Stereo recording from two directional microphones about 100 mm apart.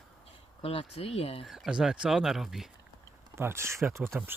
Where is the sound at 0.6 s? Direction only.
70° left (ahead or behind).